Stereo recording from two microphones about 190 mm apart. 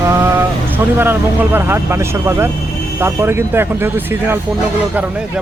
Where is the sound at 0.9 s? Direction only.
10° right (ahead or behind).